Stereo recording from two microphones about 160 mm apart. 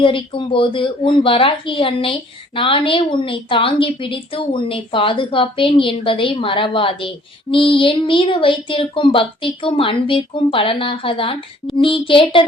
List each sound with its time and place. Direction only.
0.0 s a woman's voice: 30° left (ahead or behind)